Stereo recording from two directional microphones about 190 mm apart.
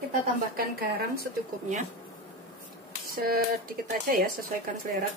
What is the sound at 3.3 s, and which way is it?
Speech, 50° right (ahead or behind).